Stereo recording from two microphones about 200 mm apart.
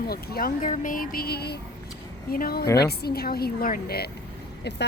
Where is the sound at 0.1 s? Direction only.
45° left (ahead or behind).